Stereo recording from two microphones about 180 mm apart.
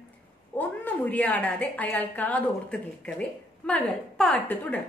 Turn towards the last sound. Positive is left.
turn(degrees=10)  # may be behind; listen again after turning